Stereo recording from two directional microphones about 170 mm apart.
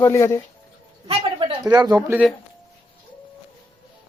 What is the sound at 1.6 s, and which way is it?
Speech, 20° right (ahead or behind).